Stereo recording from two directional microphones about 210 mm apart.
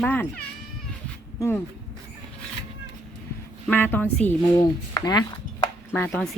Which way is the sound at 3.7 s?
10° left (ahead or behind).